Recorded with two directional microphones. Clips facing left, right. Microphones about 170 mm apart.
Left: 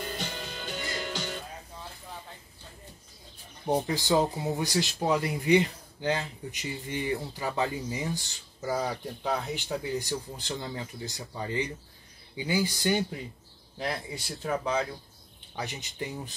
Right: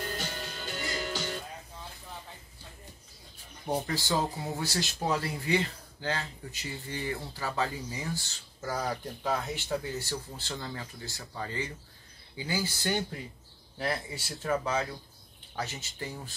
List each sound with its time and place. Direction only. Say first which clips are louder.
0.2 s music: left 1 dB; 5° right (ahead or behind)
3.6 s speech: left 4 dB; 15° left (ahead or behind)
8.5 s speech: left 3 dB; 10° left (ahead or behind)
9.9 s speech: left 4 dB; 15° left (ahead or behind)
13.7 s speech: even; 5° right (ahead or behind)
15.5 s speech: even; 15° left (ahead or behind)